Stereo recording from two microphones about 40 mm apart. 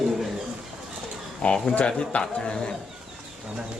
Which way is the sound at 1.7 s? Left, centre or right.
Left.